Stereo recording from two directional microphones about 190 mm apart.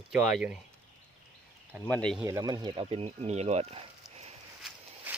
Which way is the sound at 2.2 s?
20° right (ahead or behind).